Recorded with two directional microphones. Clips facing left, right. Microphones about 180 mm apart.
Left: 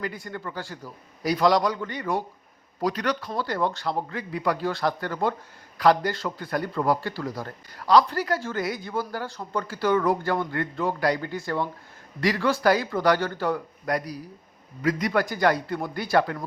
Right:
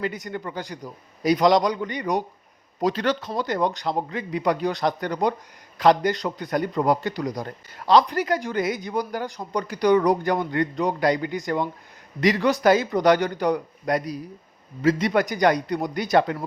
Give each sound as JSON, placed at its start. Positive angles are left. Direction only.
{"t": 0.0, "sound": "a man's voice", "side_deg": -20}